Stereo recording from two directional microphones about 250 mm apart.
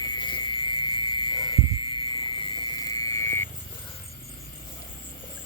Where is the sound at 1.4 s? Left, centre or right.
Left.